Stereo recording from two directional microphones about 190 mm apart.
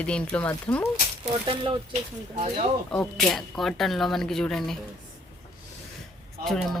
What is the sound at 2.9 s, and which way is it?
Speech, 5° left (ahead or behind).